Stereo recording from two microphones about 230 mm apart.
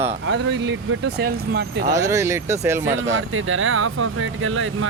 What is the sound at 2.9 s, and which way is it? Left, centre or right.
Speech, right.